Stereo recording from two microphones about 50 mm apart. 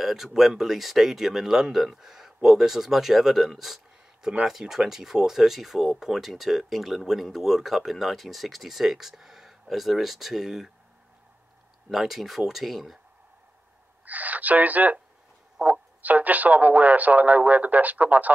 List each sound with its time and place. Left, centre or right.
0.0 s speech: centre
11.9 s speech: centre
14.0 s speech: right